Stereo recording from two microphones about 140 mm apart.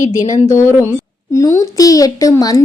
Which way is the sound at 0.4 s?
20° left (ahead or behind).